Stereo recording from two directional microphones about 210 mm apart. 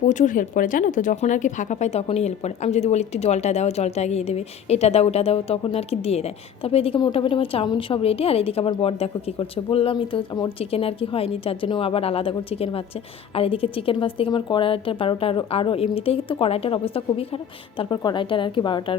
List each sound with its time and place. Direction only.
0.0 s a woman's voice: 35° left (ahead or behind)